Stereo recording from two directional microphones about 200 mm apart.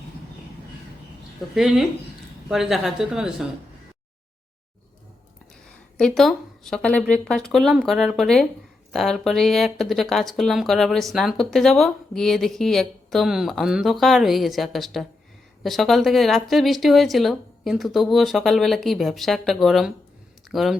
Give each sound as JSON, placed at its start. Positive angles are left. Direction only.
{"t": 1.5, "sound": "speech", "side_deg": 0}
{"t": 6.0, "sound": "speech", "side_deg": 0}